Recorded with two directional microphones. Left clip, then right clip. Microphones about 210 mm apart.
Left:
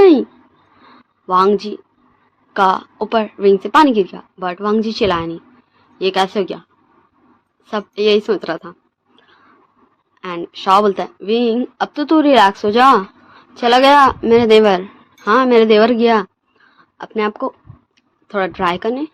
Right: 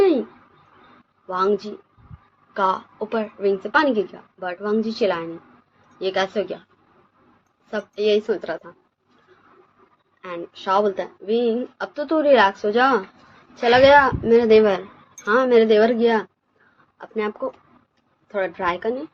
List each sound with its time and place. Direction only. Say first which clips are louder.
0.0 s a sound: left 9 dB; 55° left (ahead or behind)
1.3 s a woman's voice: left 8 dB; 55° left (ahead or behind)
7.7 s speech: left 6 dB; 50° left (ahead or behind)
10.2 s speech: left 7 dB; 55° left (ahead or behind)